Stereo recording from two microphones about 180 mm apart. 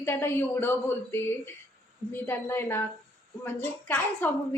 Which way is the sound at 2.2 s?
10° left (ahead or behind).